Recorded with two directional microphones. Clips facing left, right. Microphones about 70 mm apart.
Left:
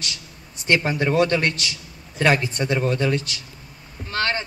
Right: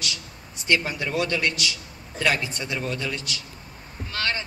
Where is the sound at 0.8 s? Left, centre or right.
Left.